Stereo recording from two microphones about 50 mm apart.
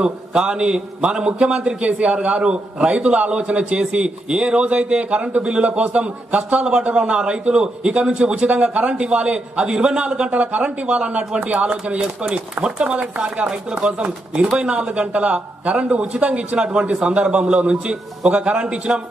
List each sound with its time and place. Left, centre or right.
0.0 s a man's voice: centre
10.4 s a man's voice: right